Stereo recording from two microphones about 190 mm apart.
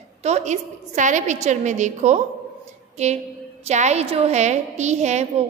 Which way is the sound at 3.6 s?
35° right (ahead or behind).